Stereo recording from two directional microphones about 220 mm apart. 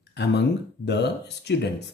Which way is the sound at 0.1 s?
50° left (ahead or behind).